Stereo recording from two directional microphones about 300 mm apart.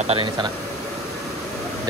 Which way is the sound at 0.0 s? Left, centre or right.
Centre.